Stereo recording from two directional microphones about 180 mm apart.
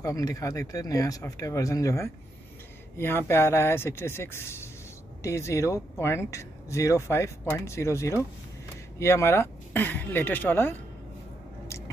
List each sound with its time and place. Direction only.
0.0 s speech: 20° left (ahead or behind)